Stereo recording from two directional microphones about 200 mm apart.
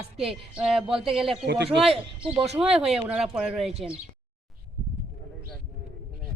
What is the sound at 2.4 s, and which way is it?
Speech, 5° right (ahead or behind).